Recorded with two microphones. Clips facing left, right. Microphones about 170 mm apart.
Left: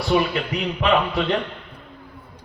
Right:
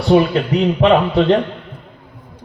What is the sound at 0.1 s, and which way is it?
Speech, 40° right (ahead or behind).